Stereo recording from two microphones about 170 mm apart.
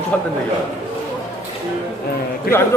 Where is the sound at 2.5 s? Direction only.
65° left (ahead or behind).